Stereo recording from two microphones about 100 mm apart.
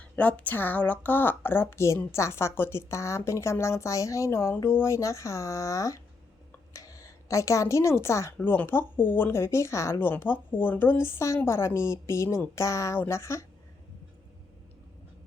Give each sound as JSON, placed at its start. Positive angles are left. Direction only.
{"t": 0.0, "sound": "a woman's voice", "side_deg": 15}